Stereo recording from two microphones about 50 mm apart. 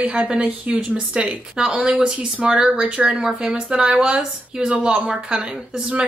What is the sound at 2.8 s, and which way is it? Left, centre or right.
Speech, right.